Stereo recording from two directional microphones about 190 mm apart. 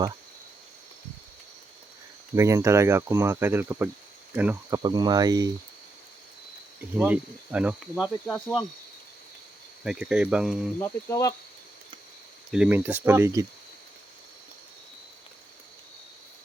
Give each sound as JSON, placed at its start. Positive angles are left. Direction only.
{"t": 2.3, "sound": "speech", "side_deg": -15}
{"t": 4.8, "sound": "speech", "side_deg": -20}
{"t": 6.9, "sound": "speech", "side_deg": -10}
{"t": 8.3, "sound": "speech", "side_deg": 5}
{"t": 9.8, "sound": "speech", "side_deg": -5}
{"t": 10.8, "sound": "cricket", "side_deg": 15}
{"t": 12.5, "sound": "speech", "side_deg": -5}